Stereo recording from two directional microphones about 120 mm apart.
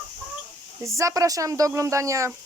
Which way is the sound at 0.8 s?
25° right (ahead or behind).